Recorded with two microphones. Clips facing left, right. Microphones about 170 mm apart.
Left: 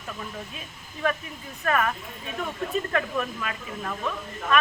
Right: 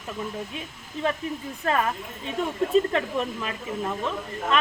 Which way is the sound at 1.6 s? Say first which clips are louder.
Even; 25° right (ahead or behind).